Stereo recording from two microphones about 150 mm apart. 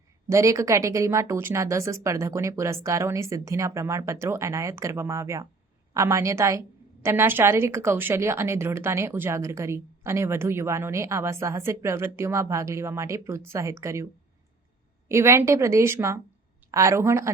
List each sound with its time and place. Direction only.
0.3 s a woman's voice: 20° right (ahead or behind)
15.1 s a woman's voice: 20° right (ahead or behind)